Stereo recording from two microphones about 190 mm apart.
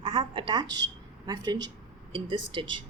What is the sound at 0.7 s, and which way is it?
Speech, 65° right (ahead or behind).